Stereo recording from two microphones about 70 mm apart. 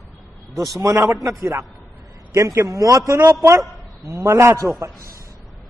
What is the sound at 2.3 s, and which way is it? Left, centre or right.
A man's voice, right.